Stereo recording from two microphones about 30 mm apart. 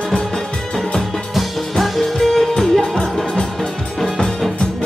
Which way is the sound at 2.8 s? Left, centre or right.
Left.